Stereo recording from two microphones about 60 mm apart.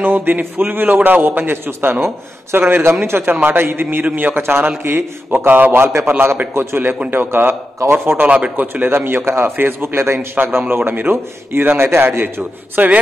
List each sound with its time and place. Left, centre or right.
0.0 s a man's voice: right
3.8 s speech: right
4.3 s a man's voice: right
8.8 s a man's voice: right